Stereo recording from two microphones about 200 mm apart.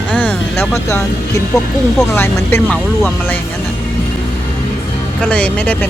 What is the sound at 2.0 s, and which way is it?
Speech, 10° left (ahead or behind).